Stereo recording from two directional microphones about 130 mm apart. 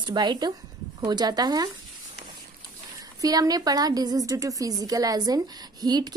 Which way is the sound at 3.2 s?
30° right (ahead or behind).